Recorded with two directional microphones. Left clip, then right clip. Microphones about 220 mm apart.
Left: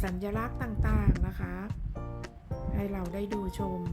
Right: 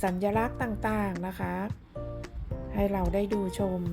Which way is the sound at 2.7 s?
15° right (ahead or behind).